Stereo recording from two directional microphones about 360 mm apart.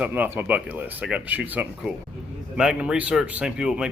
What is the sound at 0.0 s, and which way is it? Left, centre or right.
Speech, centre.